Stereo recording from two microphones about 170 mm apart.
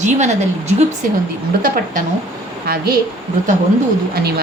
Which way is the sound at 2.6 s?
65° right (ahead or behind).